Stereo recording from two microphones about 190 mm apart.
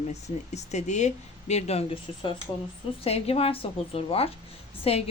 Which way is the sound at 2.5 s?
15° left (ahead or behind).